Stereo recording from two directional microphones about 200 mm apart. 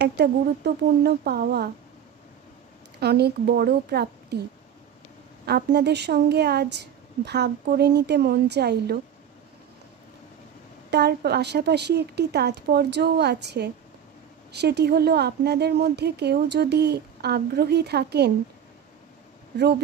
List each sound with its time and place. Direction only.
0.0 s speech: 55° right (ahead or behind)
3.0 s speech: 55° right (ahead or behind)
5.5 s a woman's voice: 55° right (ahead or behind)
10.9 s a woman's voice: 55° right (ahead or behind)